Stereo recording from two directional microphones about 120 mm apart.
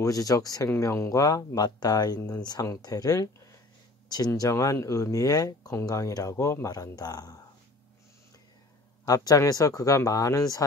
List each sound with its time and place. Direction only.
0.0 s speech: 30° left (ahead or behind)
9.0 s speech: 30° left (ahead or behind)